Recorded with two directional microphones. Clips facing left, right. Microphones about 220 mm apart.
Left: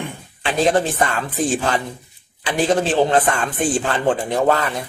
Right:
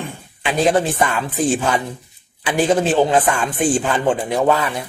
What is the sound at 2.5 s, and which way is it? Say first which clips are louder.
A man's voice: right 2 dB; 10° right (ahead or behind).